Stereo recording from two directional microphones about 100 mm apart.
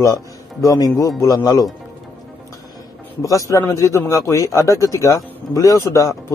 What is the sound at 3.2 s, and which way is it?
Speech, 35° left (ahead or behind).